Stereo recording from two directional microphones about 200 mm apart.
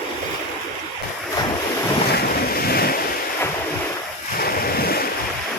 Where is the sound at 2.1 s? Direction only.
50° left (ahead or behind).